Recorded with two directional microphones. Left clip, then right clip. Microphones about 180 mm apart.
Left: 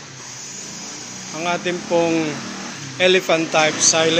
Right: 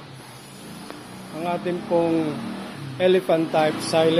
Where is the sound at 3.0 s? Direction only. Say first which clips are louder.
Left 3 dB; 15° right (ahead or behind).